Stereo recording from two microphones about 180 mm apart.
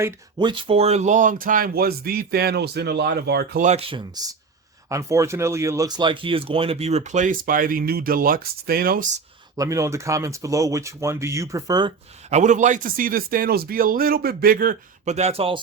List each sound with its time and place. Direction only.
0.3 s speech: 25° right (ahead or behind); by 3.6 s 65° right (ahead or behind)
3.6 s speech: 35° right (ahead or behind)
9.6 s speech: 15° right (ahead or behind)
12.3 s speech: 45° right (ahead or behind)